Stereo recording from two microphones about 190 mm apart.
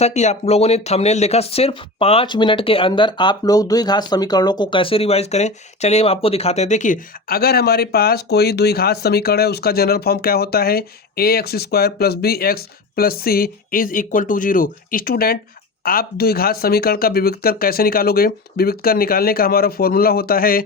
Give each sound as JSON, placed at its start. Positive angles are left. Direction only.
{"t": 0.0, "sound": "speech", "side_deg": 35}